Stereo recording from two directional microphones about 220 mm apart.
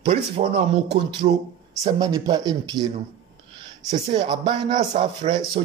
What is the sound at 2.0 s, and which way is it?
Speech, 15° right (ahead or behind).